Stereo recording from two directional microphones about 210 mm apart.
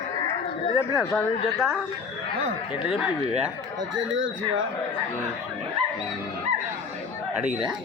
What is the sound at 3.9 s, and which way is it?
Speech, 65° right (ahead or behind).